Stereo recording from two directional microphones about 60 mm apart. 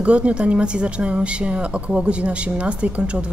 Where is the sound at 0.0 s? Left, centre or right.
Right.